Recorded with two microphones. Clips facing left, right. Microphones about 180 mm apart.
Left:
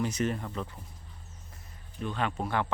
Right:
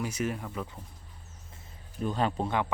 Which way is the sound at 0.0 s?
10° right (ahead or behind).